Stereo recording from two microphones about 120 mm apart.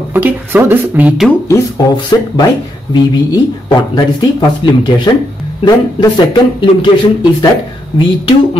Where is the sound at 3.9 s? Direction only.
35° left (ahead or behind).